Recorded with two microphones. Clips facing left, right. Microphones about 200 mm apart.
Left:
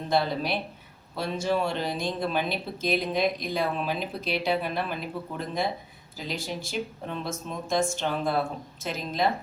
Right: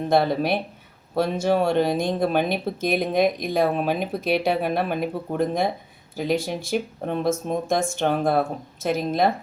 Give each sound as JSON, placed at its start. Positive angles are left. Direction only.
{"t": 0.1, "sound": "speech", "side_deg": -55}